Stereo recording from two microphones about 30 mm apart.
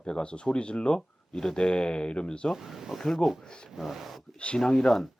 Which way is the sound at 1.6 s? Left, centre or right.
Left.